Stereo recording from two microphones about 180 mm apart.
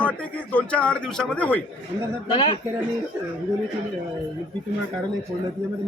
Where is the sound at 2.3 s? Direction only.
25° left (ahead or behind).